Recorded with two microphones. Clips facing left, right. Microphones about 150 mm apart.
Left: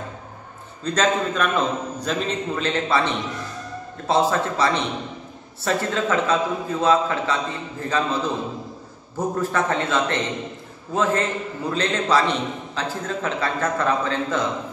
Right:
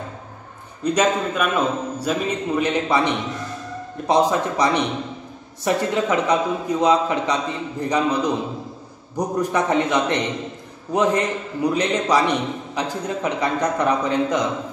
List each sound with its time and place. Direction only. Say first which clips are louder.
0.8 s a man's voice: right 2 dB; 10° right (ahead or behind)